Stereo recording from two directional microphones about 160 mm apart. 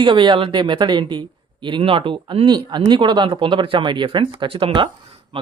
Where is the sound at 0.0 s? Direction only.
30° right (ahead or behind).